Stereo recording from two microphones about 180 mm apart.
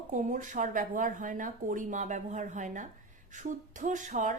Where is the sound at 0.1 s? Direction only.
45° right (ahead or behind).